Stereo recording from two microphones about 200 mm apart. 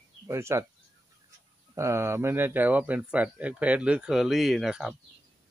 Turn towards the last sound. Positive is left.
turn(degrees=0)  # may be behind; listen again after turning